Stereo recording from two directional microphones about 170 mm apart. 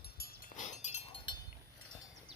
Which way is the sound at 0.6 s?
40° left (ahead or behind).